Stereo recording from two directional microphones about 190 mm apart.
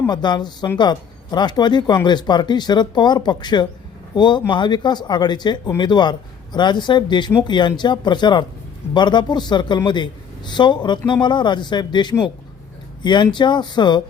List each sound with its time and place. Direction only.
0.0 s speech: 20° left (ahead or behind)